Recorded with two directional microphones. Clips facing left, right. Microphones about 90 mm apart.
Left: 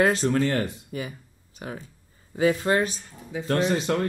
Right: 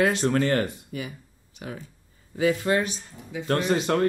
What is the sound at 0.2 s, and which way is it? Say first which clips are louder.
Speech: even; 45° right (ahead or behind).